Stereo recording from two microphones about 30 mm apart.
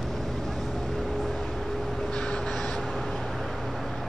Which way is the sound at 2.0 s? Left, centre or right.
Left.